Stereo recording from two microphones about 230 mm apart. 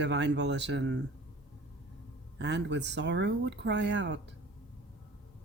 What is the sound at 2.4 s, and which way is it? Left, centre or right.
Speech, right.